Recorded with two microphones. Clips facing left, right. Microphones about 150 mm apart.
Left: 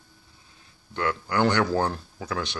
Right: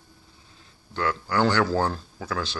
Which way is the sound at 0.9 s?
20° left (ahead or behind).